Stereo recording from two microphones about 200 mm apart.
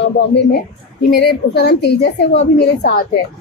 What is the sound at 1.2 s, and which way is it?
A woman's voice, 55° left (ahead or behind).